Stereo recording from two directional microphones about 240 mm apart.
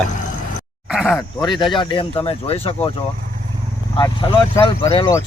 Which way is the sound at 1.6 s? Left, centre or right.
Centre.